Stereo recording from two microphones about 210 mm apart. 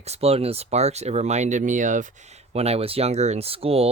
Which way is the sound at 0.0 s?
30° right (ahead or behind).